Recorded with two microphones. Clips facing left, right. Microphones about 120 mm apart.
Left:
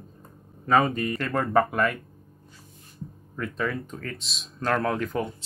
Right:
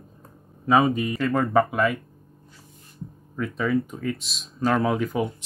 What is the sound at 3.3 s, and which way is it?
Speech, 5° right (ahead or behind).